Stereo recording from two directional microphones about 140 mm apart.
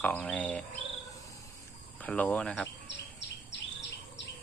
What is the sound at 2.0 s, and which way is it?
Speech, 10° left (ahead or behind).